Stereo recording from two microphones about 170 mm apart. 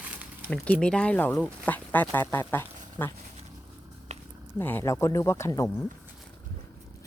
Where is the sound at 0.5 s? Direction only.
5° left (ahead or behind).